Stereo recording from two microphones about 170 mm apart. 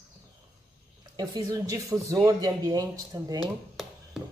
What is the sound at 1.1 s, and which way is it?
A woman's voice, 20° right (ahead or behind).